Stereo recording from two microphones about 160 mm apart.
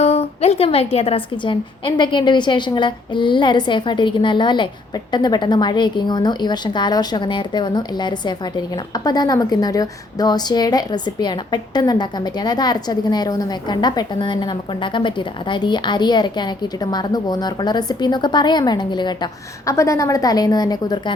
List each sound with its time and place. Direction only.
0.0 s a woman's voice: 40° left (ahead or behind); by 21.0 s 25° left (ahead or behind)